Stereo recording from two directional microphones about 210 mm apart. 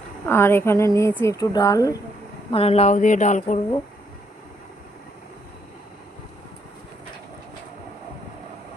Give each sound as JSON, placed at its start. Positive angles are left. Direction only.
{"t": 0.3, "sound": "speech", "side_deg": 10}
{"t": 2.5, "sound": "speech", "side_deg": 30}